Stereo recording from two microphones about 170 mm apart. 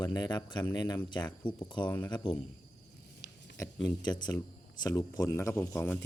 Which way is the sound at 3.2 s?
90° left.